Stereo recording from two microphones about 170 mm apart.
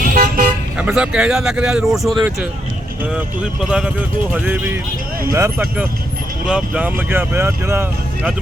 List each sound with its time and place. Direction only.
0.0 s car: 55° right (ahead or behind)
0.8 s speech: 5° right (ahead or behind)
3.6 s speech: 5° right (ahead or behind)